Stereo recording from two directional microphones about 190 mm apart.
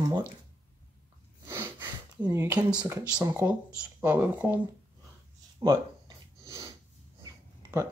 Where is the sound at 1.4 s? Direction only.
15° right (ahead or behind).